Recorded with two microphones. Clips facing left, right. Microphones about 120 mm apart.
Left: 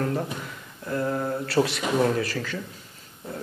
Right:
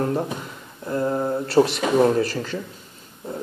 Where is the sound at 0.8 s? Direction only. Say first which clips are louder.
Right 4 dB; 25° right (ahead or behind).